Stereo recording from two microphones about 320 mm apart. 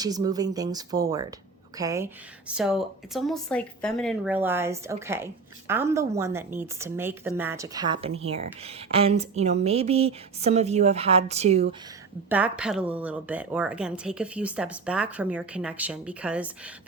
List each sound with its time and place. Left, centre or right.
0.0 s a woman's voice: centre
12.3 s a woman's voice: centre